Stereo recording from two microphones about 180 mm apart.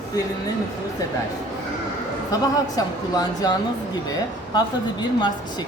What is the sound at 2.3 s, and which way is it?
Speech, 20° left (ahead or behind).